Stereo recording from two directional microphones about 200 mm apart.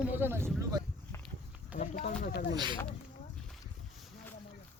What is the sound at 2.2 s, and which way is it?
Speech, 50° left (ahead or behind).